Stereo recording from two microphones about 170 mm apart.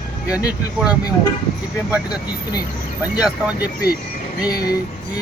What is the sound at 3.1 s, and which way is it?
Speech, 5° right (ahead or behind).